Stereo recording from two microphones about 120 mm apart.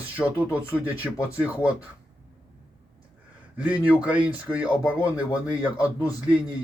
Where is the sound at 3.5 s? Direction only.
10° right (ahead or behind).